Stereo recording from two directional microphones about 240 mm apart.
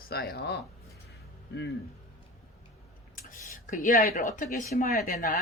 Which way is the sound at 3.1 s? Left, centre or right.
Left.